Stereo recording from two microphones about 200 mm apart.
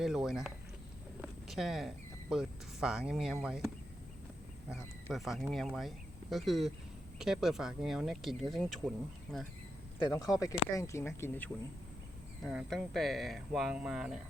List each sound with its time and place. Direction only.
0.0 s speech: centre (ahead or behind)
1.2 s a sound: centre (ahead or behind)
2.3 s speech: centre (ahead or behind)
5.1 s speech: centre (ahead or behind)
10.1 s speech: 20° left (ahead or behind)
12.4 s speech: centre (ahead or behind)